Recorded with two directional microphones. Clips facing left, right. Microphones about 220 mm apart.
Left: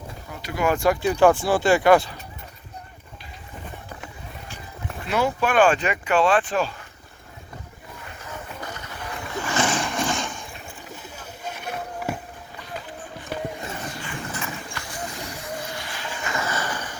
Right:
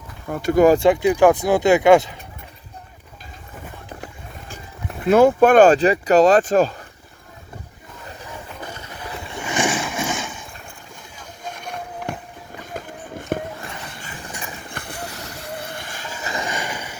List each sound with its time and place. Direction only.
0.3 s speech: 45° right (ahead or behind)
1.0 s speech: 15° right (ahead or behind)
5.0 s speech: 50° right (ahead or behind)
9.3 s boat: 15° right (ahead or behind)
11.1 s a sound: 5° left (ahead or behind)
12.6 s run: 50° right (ahead or behind)
14.7 s clip-clop: 55° right (ahead or behind)
15.7 s vehicle: 50° right (ahead or behind)
16.3 s a sound: 15° right (ahead or behind)